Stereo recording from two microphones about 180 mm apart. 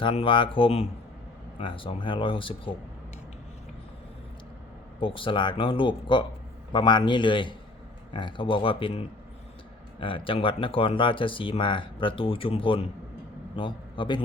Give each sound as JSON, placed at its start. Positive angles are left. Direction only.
{"t": 0.0, "sound": "speech", "side_deg": 30}
{"t": 4.9, "sound": "a man's voice", "side_deg": 30}